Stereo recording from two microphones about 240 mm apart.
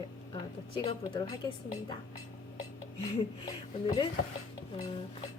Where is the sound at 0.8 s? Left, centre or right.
Centre.